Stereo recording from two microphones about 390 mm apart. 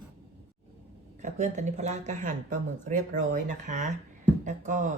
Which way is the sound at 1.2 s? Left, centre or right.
Centre.